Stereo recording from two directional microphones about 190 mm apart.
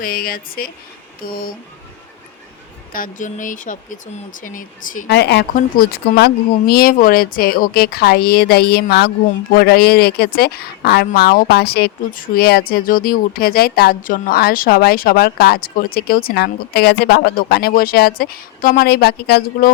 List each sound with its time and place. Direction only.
0.0 s a woman's voice: 50° left (ahead or behind)
2.9 s a woman's voice: 45° left (ahead or behind)
5.0 s a woman's voice: 60° left (ahead or behind)